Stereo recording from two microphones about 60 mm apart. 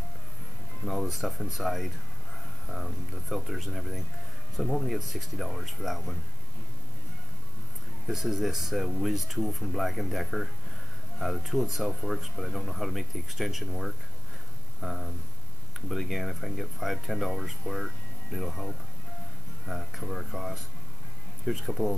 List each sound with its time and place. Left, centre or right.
0.8 s speech: centre
8.1 s speech: centre